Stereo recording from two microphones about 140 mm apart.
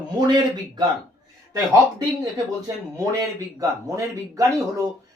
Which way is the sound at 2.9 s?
25° right (ahead or behind).